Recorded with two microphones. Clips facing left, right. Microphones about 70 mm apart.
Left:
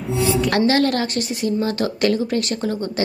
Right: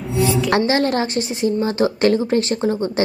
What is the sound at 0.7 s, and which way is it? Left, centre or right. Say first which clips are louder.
A woman's voice: even; right.